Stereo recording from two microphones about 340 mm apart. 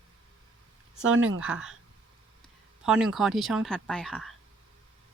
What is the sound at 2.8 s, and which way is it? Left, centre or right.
Speech, centre.